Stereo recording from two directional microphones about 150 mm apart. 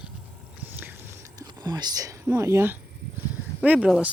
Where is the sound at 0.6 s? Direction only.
10° right (ahead or behind).